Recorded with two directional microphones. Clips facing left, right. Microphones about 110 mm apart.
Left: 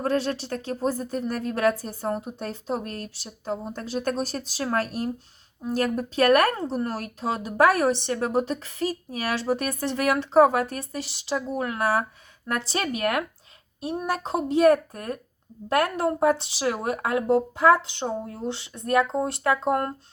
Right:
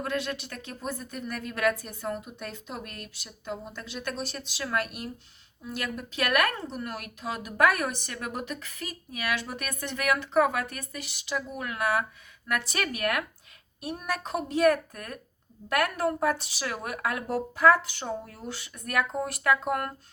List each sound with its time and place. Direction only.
0.0 s speech: 35° left (ahead or behind)